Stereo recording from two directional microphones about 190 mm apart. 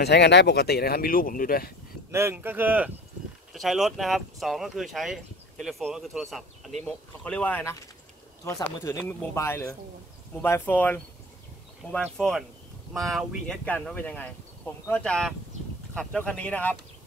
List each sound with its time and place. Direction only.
0.0 s speech: 65° left (ahead or behind)
2.0 s speech: 15° right (ahead or behind); by 16.7 s 5° left (ahead or behind)